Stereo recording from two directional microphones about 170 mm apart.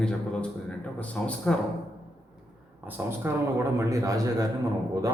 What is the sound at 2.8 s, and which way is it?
A man's voice, 10° right (ahead or behind).